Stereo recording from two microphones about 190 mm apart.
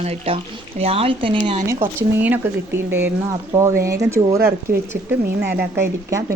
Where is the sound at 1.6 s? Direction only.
10° right (ahead or behind).